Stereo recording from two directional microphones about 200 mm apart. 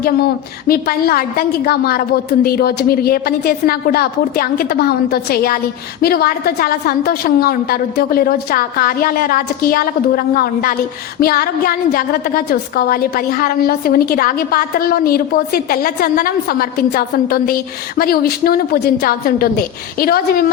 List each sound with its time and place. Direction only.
0.7 s a woman's voice: 50° left (ahead or behind)